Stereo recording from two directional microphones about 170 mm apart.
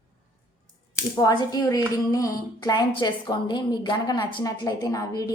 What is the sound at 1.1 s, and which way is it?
A woman's voice, 25° left (ahead or behind).